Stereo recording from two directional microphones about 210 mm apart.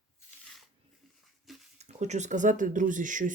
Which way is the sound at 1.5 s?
Centre (ahead or behind).